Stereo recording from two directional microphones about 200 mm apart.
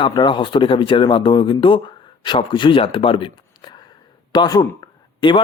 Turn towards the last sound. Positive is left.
turn(degrees=25)  # may be behind; listen again after turning